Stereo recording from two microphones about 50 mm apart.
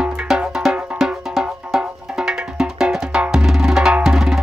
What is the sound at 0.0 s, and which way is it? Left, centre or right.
Music, centre.